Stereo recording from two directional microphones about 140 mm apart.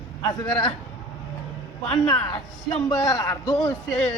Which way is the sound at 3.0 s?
25° left (ahead or behind).